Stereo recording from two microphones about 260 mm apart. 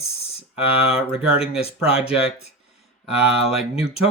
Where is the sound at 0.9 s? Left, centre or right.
Centre.